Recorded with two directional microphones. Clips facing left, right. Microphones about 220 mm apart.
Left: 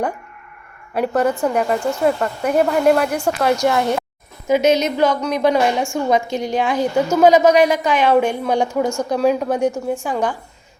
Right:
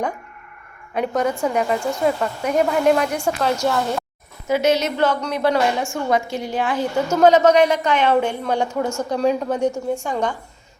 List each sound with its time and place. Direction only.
0.9 s a woman's voice: 5° left (ahead or behind)